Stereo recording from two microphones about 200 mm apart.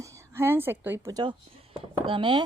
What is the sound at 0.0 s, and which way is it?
Speech, 15° right (ahead or behind).